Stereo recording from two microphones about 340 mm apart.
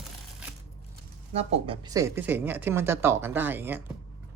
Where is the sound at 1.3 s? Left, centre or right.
Centre.